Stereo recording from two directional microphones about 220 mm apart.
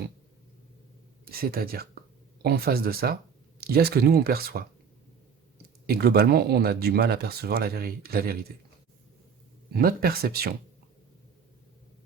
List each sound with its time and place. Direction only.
1.2 s speech: 45° right (ahead or behind)
5.8 s speech: 45° right (ahead or behind)
9.7 s speech: 45° right (ahead or behind)